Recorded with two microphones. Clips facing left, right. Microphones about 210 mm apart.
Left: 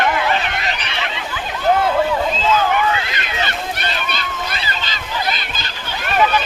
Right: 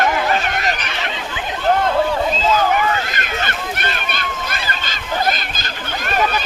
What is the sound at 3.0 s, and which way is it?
Boat, 45° right (ahead or behind).